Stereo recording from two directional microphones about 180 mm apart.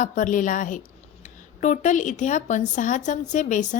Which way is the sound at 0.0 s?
45° left (ahead or behind).